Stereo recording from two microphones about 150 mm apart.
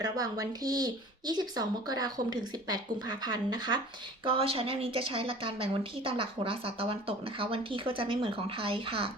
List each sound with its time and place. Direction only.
0.0 s speech: 25° right (ahead or behind)
4.3 s a woman's voice: 40° right (ahead or behind)